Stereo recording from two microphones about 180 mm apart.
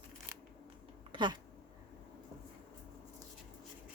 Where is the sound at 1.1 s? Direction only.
25° right (ahead or behind).